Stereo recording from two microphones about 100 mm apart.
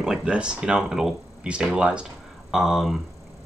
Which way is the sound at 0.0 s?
10° right (ahead or behind).